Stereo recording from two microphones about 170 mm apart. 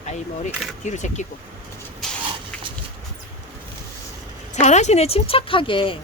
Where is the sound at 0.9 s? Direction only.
45° left (ahead or behind).